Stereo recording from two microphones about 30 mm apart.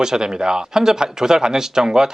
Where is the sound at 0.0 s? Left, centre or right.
Right.